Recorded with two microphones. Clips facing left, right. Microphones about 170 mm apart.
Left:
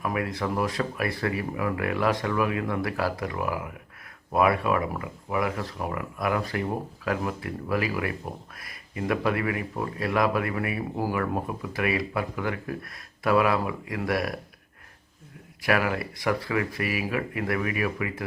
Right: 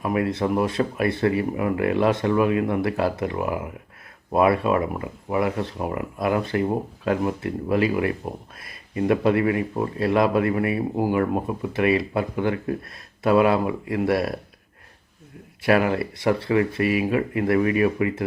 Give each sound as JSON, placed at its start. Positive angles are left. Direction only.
{"t": 0.0, "sound": "speech", "side_deg": -25}
{"t": 15.6, "sound": "speech", "side_deg": -25}